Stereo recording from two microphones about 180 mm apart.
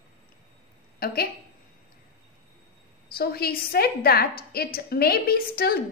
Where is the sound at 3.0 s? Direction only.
60° left (ahead or behind).